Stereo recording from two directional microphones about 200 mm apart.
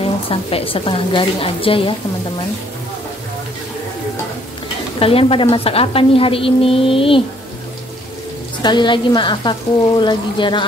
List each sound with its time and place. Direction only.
0.0 s a woman's voice: 30° left (ahead or behind)
4.9 s a woman's voice: 30° left (ahead or behind)
8.6 s a woman's voice: 20° left (ahead or behind)